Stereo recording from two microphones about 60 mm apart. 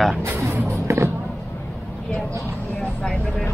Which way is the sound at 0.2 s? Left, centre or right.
Right.